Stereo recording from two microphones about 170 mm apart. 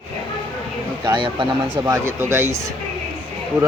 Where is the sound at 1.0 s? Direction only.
25° right (ahead or behind).